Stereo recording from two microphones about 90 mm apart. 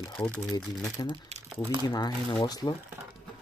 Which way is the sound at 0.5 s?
50° left (ahead or behind).